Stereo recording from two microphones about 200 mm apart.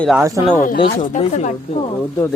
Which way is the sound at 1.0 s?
35° left (ahead or behind).